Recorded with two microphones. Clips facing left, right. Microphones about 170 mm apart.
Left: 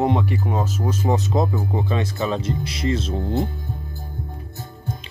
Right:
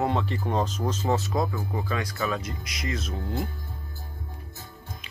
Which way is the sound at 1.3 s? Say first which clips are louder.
Left 6 dB; 25° left (ahead or behind).